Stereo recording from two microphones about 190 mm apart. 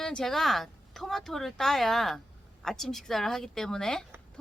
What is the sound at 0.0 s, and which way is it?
Speech, 5° left (ahead or behind).